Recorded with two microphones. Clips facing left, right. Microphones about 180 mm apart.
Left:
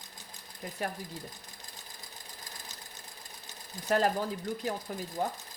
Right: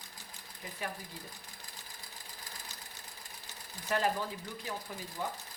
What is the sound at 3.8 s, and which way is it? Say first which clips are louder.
Speech: left 4 dB; 40° left (ahead or behind).